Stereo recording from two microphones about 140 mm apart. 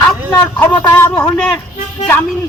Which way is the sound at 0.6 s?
15° left (ahead or behind).